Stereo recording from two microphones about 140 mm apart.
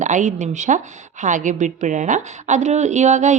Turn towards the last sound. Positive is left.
turn(degrees=-60)  # may be behind; listen again after turning